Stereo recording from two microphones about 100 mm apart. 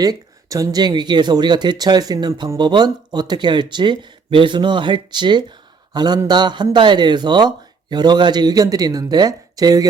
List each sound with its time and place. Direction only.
0.0 s a man's voice: 40° right (ahead or behind)